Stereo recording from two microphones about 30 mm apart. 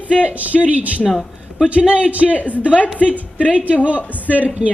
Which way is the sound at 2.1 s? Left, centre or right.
Right.